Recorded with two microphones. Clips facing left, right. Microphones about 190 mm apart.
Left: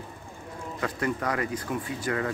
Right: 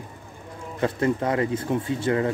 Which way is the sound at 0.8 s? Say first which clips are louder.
Right 6 dB; 25° right (ahead or behind).